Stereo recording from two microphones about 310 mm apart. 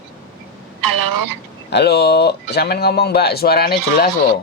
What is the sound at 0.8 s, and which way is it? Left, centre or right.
Speech, right.